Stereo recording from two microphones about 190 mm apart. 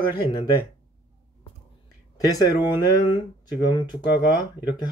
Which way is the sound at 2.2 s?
20° left (ahead or behind).